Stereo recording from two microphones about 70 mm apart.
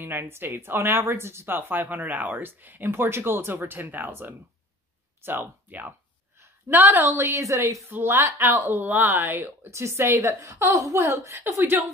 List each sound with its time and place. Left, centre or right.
0.0 s speech: right
7.9 s speech: right
8.2 s a woman's voice: right
8.5 s speech: right
9.7 s a woman's voice: right